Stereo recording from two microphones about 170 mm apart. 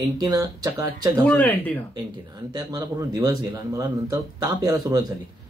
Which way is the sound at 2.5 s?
20° right (ahead or behind).